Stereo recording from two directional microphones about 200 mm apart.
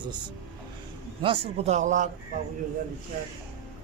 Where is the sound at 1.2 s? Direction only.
25° right (ahead or behind).